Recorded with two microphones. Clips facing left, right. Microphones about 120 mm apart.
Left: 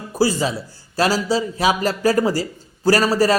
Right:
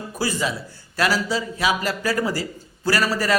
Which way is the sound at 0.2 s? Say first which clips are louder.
Left 6 dB; 30° left (ahead or behind).